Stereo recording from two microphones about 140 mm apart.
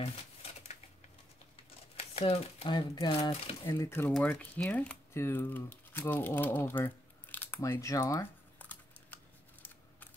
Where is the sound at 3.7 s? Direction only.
20° left (ahead or behind).